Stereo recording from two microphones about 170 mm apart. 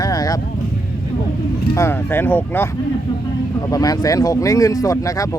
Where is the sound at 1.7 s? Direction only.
15° left (ahead or behind).